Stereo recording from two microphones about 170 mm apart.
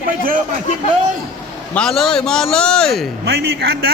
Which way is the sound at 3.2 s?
75° right (ahead or behind).